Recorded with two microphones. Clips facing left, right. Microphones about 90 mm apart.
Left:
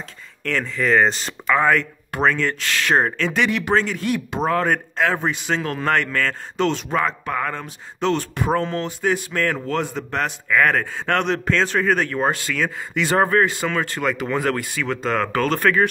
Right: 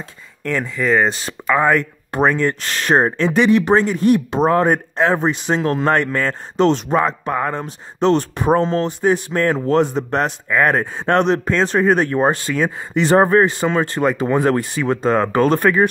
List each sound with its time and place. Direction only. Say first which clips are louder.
0.4 s speech: right 2 dB; 15° right (ahead or behind)
2.6 s speech: even; 35° right (ahead or behind)
3.0 s speech: right 5 dB; 20° right (ahead or behind)